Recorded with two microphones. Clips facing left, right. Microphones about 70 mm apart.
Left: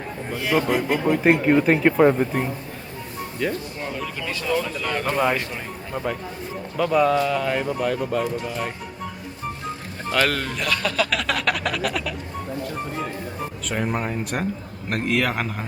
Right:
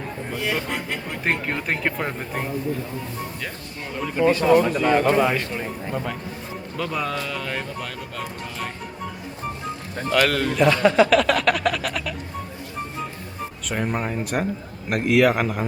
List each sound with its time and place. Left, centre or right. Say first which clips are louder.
0.3 s speech: left 5 dB; centre
4.2 s speech: right 10 dB; right
4.8 s speech: right 7 dB; right
5.1 s speech: right 2 dB; centre
10.1 s speech: right 2 dB; centre
10.6 s speech: right 9 dB; right
11.1 s speech: right 6 dB; centre
13.7 s speech: even; centre